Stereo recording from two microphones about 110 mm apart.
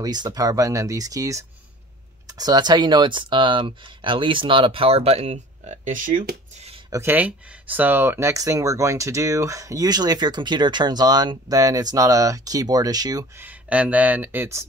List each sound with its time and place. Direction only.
0.0 s speech: 40° right (ahead or behind); by 5.8 s 90° right
6.9 s speech: 20° right (ahead or behind)
13.4 s speech: 15° right (ahead or behind)